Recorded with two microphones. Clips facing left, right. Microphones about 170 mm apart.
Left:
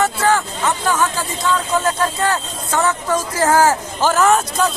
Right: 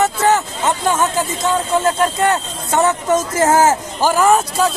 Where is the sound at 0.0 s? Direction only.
20° right (ahead or behind).